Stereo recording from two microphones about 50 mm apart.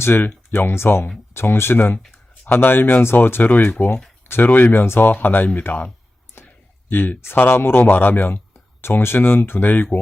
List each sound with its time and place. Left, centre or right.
0.0 s speech: left
6.4 s a sound: left
6.9 s speech: left
7.3 s speech: left